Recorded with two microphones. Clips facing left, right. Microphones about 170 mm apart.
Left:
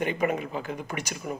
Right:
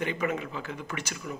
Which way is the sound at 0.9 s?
30° left (ahead or behind).